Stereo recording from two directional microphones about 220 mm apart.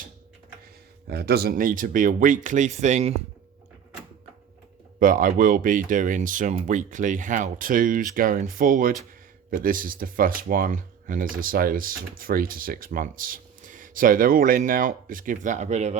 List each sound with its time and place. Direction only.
1.0 s speech: 45° right (ahead or behind)
4.9 s speech: 40° right (ahead or behind)